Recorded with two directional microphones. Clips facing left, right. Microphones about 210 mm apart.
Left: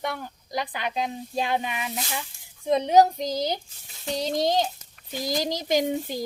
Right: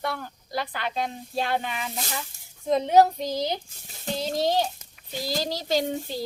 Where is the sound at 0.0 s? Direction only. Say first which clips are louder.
Even; 15° left (ahead or behind).